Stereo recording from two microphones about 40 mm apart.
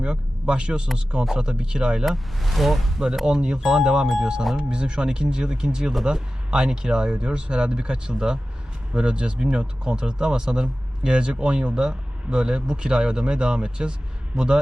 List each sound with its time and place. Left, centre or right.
0.0 s speech: right
2.0 s speech: centre
3.2 s speech: centre